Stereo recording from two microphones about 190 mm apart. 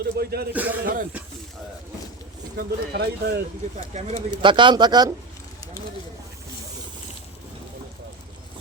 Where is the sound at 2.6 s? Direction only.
55° right (ahead or behind).